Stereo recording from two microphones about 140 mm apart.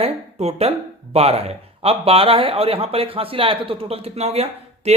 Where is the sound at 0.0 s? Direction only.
50° right (ahead or behind).